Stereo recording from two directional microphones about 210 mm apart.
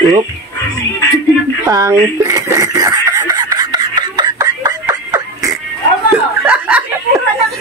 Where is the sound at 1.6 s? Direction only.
15° right (ahead or behind).